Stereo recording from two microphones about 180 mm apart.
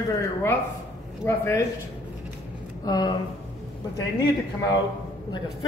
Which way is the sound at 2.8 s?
20° left (ahead or behind).